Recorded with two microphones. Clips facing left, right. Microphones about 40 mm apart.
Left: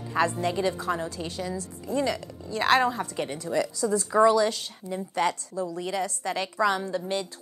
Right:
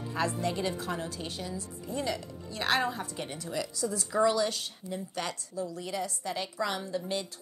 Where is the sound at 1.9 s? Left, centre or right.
Left.